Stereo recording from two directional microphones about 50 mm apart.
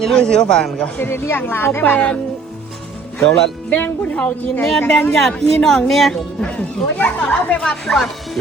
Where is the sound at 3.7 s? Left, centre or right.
Left.